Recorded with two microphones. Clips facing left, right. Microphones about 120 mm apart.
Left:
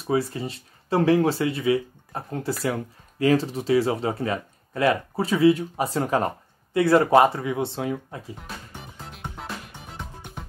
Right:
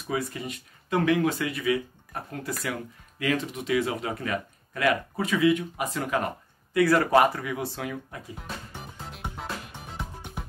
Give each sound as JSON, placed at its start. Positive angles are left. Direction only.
{"t": 0.0, "sound": "speech", "side_deg": 30}
{"t": 9.0, "sound": "music", "side_deg": 0}